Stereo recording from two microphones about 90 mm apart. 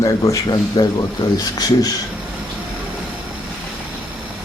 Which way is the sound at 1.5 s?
45° left (ahead or behind).